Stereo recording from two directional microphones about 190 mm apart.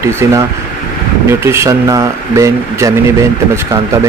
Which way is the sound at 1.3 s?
15° right (ahead or behind).